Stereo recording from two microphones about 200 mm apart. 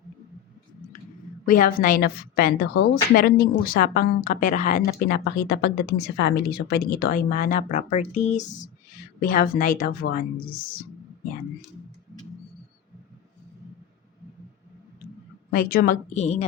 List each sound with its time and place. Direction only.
1.5 s a woman's voice: 45° left (ahead or behind)
15.4 s a woman's voice: 45° left (ahead or behind)